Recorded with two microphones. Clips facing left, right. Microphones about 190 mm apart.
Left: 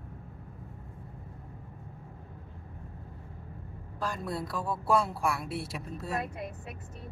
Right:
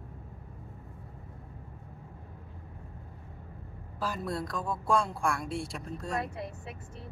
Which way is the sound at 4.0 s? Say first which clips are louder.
Right 1 dB; centre (ahead or behind).